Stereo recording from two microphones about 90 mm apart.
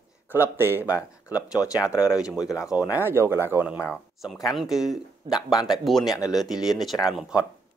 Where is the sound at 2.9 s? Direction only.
25° right (ahead or behind).